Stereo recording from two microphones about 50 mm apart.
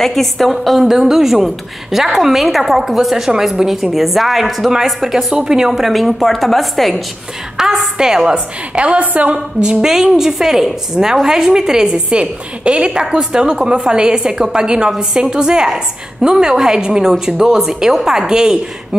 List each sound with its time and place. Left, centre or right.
0.0 s a woman's voice: centre
8.8 s a woman's voice: right; by 18.6 s centre